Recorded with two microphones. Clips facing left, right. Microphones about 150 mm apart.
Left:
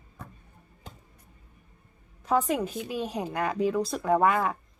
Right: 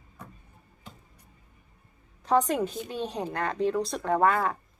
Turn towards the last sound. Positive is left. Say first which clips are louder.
# left 1 dB
turn(degrees=15)  # may be behind; listen again after turning